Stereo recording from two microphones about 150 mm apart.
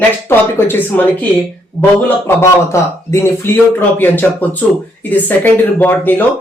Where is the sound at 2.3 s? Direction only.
15° left (ahead or behind).